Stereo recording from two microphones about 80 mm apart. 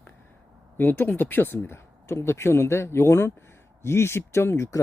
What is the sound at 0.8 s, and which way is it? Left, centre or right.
Speech, left.